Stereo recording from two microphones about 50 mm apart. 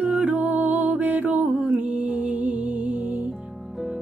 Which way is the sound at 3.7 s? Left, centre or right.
Centre.